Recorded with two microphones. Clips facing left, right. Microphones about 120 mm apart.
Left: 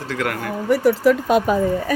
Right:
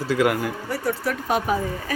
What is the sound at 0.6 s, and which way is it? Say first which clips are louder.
Speech: left 14 dB; 90° left.